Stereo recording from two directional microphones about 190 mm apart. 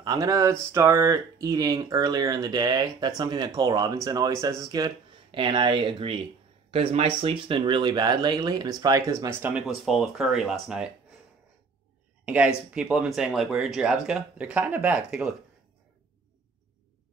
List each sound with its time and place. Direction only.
0.0 s speech: 15° right (ahead or behind); by 10.9 s centre (ahead or behind)
12.3 s speech: 5° right (ahead or behind)